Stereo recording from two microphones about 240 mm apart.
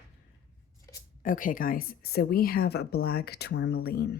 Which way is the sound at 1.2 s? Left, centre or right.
Left.